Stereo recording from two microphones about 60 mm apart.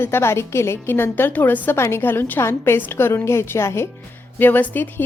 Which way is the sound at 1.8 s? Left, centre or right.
Left.